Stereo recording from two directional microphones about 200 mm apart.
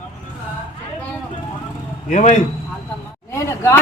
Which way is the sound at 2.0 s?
35° left (ahead or behind).